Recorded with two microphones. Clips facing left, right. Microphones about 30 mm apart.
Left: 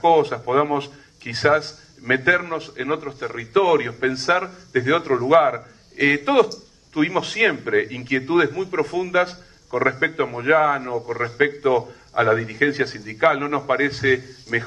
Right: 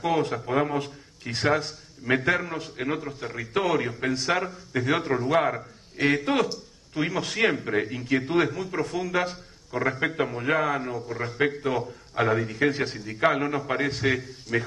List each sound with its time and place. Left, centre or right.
0.3 s a man's voice: centre